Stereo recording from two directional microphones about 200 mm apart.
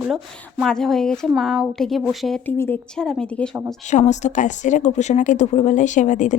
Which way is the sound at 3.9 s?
35° left (ahead or behind).